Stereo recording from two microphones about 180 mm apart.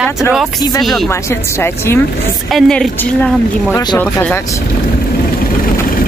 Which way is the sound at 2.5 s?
Centre (ahead or behind).